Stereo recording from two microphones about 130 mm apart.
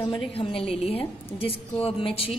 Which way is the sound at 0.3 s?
45° left (ahead or behind).